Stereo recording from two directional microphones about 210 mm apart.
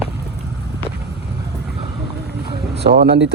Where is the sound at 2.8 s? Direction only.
50° right (ahead or behind).